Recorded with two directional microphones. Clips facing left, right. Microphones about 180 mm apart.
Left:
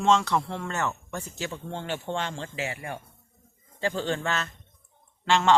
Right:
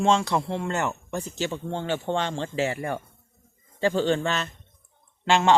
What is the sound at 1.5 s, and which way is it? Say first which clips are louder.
Speech: right 4 dB; 60° right (ahead or behind).